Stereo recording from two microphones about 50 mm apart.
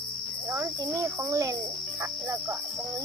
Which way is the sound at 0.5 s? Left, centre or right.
Right.